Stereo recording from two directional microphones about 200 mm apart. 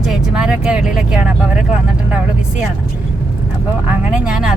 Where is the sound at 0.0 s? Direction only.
5° right (ahead or behind).